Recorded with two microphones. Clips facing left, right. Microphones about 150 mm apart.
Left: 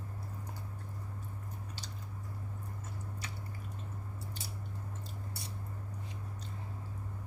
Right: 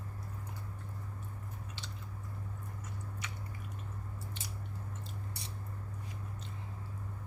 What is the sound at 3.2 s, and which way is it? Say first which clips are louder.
Squish: even; 35° left (ahead or behind).